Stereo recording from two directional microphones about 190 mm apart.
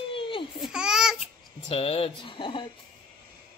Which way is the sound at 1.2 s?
30° left (ahead or behind).